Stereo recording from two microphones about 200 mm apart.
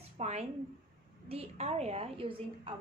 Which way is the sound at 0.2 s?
35° right (ahead or behind).